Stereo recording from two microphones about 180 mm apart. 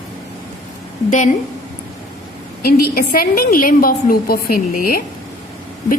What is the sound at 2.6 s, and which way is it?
A woman's voice, 55° left (ahead or behind).